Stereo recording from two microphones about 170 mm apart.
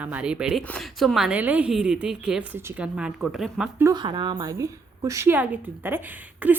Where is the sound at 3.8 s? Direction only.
20° right (ahead or behind).